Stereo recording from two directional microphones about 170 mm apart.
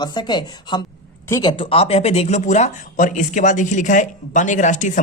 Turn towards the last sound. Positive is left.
turn(degrees=50)  # may be behind; listen again after turning